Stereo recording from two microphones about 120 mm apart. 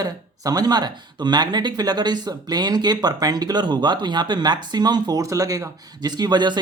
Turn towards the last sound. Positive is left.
turn(degrees=-40)  # may be behind; listen again after turning